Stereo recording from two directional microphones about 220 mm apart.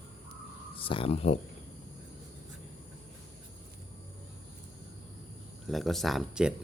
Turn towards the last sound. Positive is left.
turn(degrees=0)  # may be behind; listen again after turning